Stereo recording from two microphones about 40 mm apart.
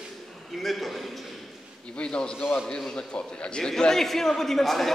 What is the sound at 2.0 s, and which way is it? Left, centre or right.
Speech, left.